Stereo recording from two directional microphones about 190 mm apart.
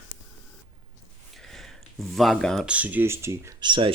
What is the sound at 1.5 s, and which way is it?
Speech, centre (ahead or behind).